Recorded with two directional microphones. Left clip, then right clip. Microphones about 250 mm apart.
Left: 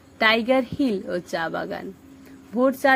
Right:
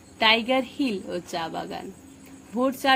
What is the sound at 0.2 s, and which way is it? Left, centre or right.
A woman's voice, left.